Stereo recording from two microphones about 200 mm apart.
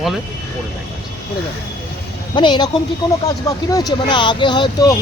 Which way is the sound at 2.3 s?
25° left (ahead or behind).